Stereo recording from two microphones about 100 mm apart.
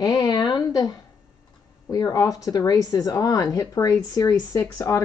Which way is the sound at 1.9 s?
40° left (ahead or behind).